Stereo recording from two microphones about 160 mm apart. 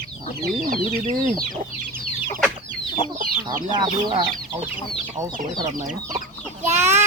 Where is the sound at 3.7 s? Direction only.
30° right (ahead or behind).